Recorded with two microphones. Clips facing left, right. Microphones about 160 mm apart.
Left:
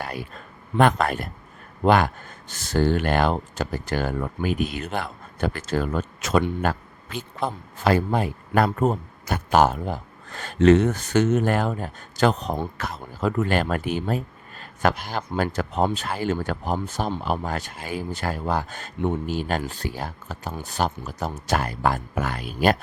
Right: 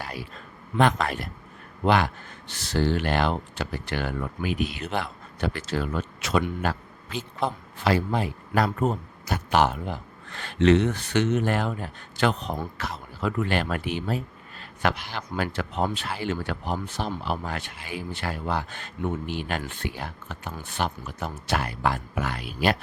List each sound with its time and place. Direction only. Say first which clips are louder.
0.0 s a man's voice: left 4 dB; 55° left (ahead or behind)